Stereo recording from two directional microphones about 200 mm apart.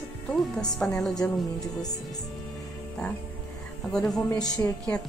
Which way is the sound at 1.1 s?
20° left (ahead or behind).